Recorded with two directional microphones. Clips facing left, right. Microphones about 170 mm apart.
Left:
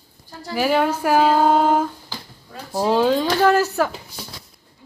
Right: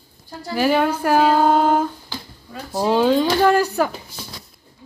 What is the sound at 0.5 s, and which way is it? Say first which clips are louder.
Female singing: right 1 dB; 5° left (ahead or behind).